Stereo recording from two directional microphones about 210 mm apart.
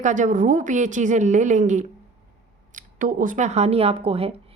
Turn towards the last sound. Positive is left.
turn(degrees=-25)  # may be behind; listen again after turning